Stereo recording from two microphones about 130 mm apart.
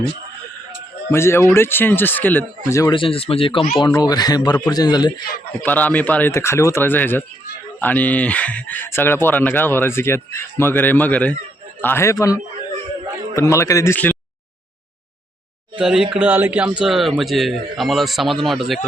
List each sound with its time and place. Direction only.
1.1 s a man's voice: 20° left (ahead or behind)
2.9 s speech: 45° left (ahead or behind)
3.8 s speech: 30° left (ahead or behind)
5.6 s a man's voice: 10° left (ahead or behind)
15.7 s a man's voice: 5° right (ahead or behind)